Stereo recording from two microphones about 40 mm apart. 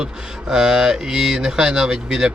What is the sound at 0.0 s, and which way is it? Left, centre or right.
Speech, centre.